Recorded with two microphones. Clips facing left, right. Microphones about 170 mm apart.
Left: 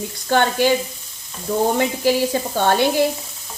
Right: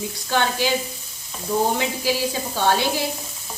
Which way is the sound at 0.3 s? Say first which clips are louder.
Left 5 dB; 50° left (ahead or behind).